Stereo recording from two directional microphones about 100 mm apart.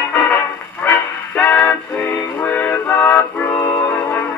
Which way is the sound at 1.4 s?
15° left (ahead or behind).